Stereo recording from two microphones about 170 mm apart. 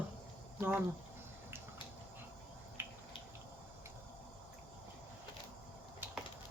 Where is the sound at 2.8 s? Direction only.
10° right (ahead or behind).